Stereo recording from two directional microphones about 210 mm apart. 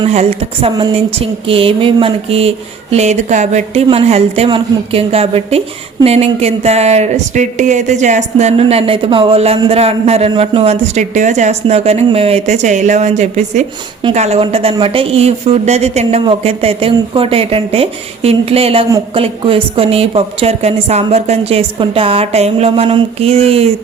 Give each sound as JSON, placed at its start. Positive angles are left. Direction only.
{"t": 0.0, "sound": "a woman's voice", "side_deg": -30}